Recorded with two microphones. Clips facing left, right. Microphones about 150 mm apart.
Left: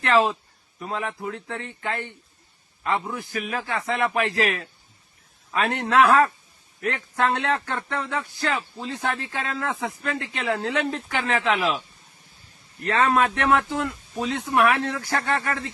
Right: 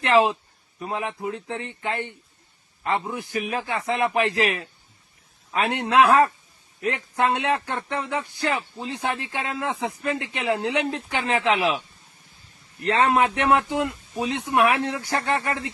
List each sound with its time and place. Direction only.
0.0 s a man's voice: 15° right (ahead or behind)
12.8 s a man's voice: 25° right (ahead or behind)